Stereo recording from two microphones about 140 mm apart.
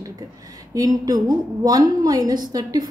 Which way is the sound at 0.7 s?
25° right (ahead or behind).